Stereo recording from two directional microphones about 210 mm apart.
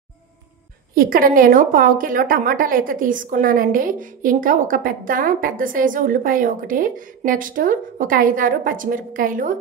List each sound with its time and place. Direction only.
0.9 s a woman's voice: 45° right (ahead or behind)